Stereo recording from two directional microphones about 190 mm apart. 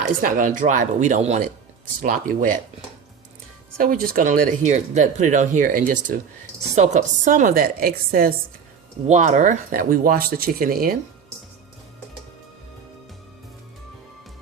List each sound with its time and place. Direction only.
0.2 s speech: 45° right (ahead or behind)
3.8 s speech: 50° right (ahead or behind)
9.0 s speech: 40° right (ahead or behind)